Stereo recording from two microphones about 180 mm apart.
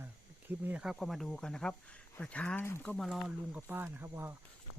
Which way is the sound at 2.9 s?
Centre (ahead or behind).